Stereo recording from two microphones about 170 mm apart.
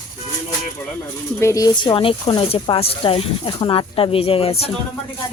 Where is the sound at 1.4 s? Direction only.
20° left (ahead or behind); by 4.7 s 35° left (ahead or behind).